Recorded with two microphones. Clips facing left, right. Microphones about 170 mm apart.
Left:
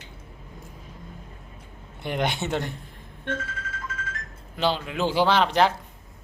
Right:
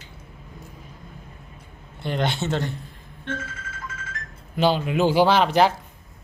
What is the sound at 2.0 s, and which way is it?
Mantra, 15° left (ahead or behind).